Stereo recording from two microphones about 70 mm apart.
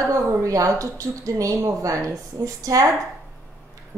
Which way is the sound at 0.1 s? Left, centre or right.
Right.